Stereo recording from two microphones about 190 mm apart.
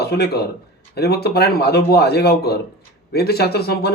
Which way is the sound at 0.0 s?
55° left (ahead or behind).